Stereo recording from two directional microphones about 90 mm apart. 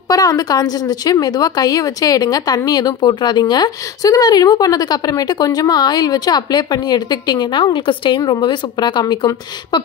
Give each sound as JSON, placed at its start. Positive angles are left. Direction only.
{"t": 0.1, "sound": "speech", "side_deg": 40}
{"t": 7.6, "sound": "a woman's voice", "side_deg": 65}